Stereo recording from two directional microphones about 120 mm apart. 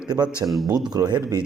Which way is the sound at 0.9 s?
35° right (ahead or behind).